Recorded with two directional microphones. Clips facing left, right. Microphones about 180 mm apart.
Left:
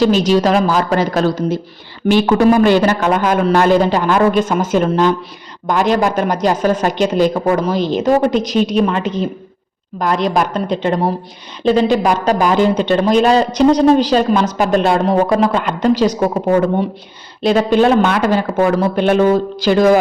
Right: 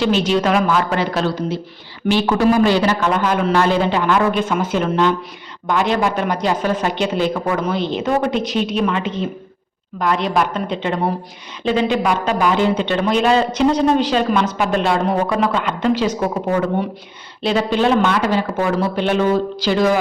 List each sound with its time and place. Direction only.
0.0 s speech: 40° left (ahead or behind)
17.4 s speech: 45° left (ahead or behind)